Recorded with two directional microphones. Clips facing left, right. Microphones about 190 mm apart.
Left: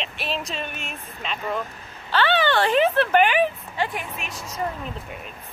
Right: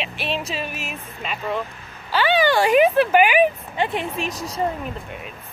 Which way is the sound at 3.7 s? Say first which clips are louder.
Right 3 dB; 25° right (ahead or behind).